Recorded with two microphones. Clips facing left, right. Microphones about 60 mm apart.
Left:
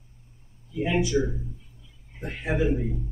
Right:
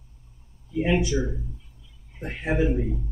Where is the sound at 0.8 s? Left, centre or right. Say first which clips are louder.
Right 1 dB; right.